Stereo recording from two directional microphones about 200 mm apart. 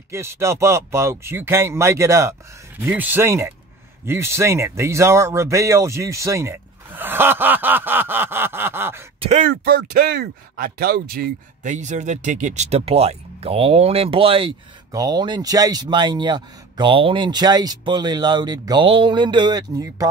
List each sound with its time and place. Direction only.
0.1 s speech: 15° right (ahead or behind)
9.2 s speech: 35° right (ahead or behind)
9.5 s speech: 50° right (ahead or behind); by 20.1 s 15° right (ahead or behind)